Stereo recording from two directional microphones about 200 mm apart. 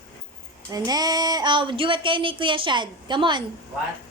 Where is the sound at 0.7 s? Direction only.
20° right (ahead or behind).